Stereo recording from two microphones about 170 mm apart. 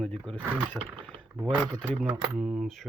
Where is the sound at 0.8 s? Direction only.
5° right (ahead or behind).